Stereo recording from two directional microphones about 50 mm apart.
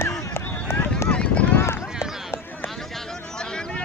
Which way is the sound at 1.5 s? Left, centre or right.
Left.